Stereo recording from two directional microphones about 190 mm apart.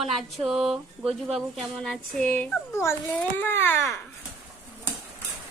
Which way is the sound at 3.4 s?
10° left (ahead or behind).